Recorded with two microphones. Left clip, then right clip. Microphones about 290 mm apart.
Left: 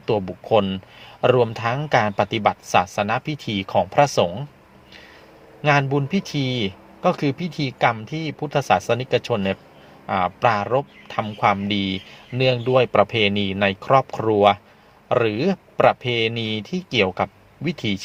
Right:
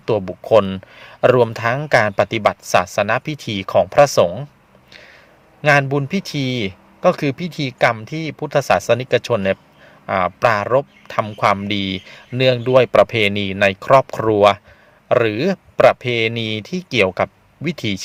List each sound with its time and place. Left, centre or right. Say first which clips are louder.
0.0 s speech: right 3 dB; right
5.6 s speech: right 4 dB; right